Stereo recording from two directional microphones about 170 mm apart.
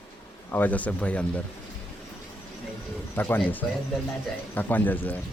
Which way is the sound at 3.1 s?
10° left (ahead or behind).